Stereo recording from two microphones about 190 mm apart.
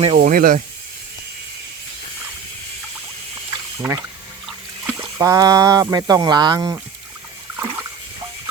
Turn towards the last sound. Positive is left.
turn(degrees=-15)  # may be behind; listen again after turning